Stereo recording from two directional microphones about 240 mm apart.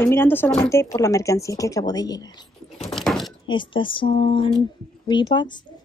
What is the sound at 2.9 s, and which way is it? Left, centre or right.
Chopping, centre.